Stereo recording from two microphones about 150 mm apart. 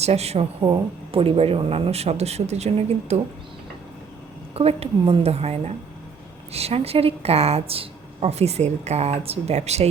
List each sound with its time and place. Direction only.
0.0 s a woman's voice: 45° right (ahead or behind)
4.5 s a woman's voice: 40° right (ahead or behind)